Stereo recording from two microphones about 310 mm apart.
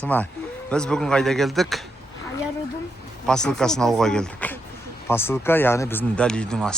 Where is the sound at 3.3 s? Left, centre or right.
Centre.